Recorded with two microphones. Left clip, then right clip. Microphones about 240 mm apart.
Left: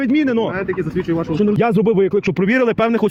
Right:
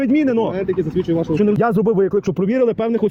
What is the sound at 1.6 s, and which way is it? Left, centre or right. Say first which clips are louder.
Speech: left 1 dB; left.